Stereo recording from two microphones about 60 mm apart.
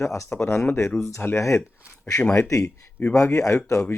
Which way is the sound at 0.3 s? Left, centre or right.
Left.